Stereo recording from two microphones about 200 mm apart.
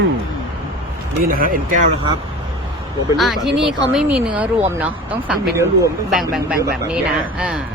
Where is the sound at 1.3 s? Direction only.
45° right (ahead or behind).